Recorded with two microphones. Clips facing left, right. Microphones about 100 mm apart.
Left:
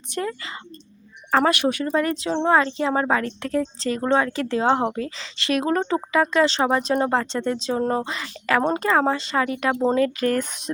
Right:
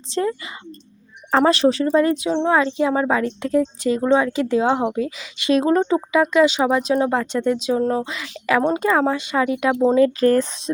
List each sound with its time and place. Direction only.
0.1 s speech: 25° right (ahead or behind)
1.5 s speech: 30° right (ahead or behind)
2.3 s speech: centre (ahead or behind)
2.6 s speech: 15° right (ahead or behind)
5.5 s speech: 25° right (ahead or behind); by 7.8 s 10° right (ahead or behind)
7.8 s speech: 5° left (ahead or behind)
8.7 s speech: 10° right (ahead or behind)
10.2 s speech: 35° right (ahead or behind)